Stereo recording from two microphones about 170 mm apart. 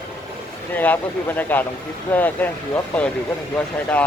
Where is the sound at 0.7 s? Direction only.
10° left (ahead or behind).